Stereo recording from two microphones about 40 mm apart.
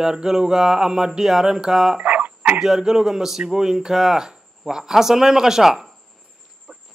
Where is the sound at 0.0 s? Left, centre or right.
Centre.